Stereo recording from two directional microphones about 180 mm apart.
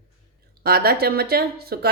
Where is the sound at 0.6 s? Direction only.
60° right (ahead or behind).